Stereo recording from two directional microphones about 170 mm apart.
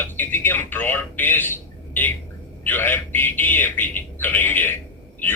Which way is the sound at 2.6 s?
10° left (ahead or behind).